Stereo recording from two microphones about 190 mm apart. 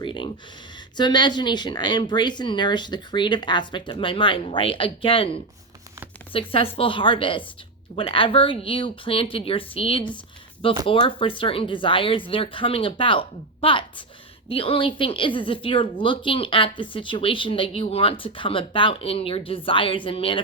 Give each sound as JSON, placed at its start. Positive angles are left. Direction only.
{"t": 0.0, "sound": "speech", "side_deg": 25}